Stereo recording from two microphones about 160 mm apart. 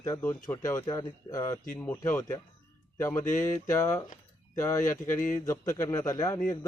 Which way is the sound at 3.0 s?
15° left (ahead or behind).